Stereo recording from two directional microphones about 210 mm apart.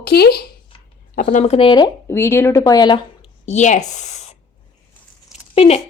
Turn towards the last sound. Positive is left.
turn(degrees=30)  # may be behind; listen again after turning